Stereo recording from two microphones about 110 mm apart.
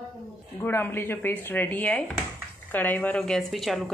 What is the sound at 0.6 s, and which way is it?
A woman's voice, 20° left (ahead or behind).